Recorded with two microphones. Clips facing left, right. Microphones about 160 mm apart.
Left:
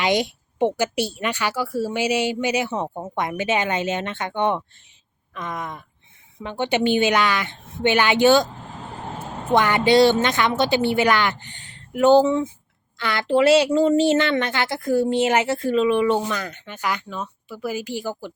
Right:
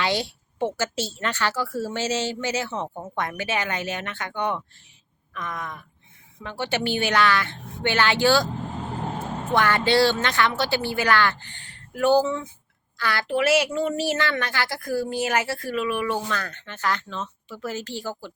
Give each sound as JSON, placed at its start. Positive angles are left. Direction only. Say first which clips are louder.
{"t": 0.0, "sound": "speech", "louder": "left 4 dB", "side_deg": 15}
{"t": 9.5, "sound": "speech", "louder": "left 4 dB", "side_deg": 20}